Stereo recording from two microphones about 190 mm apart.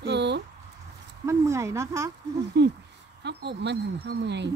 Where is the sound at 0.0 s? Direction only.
65° right (ahead or behind).